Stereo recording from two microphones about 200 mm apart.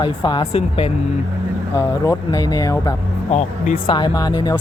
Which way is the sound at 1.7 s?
15° left (ahead or behind).